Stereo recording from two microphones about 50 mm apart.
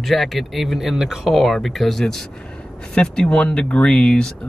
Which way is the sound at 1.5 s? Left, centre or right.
Centre.